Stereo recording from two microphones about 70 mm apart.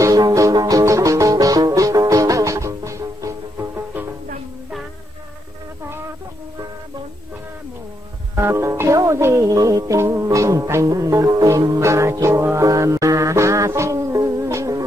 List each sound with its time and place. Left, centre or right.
0.0 s music: right
8.4 s music: right